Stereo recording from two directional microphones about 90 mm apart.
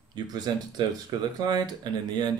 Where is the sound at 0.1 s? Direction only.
50° right (ahead or behind).